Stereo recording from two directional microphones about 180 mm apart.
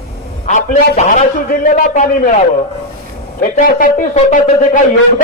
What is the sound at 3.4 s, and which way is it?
A man's voice, 50° left (ahead or behind).